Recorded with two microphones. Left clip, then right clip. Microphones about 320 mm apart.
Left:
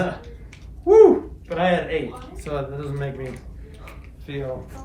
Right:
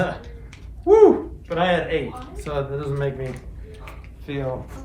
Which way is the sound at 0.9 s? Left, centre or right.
Centre.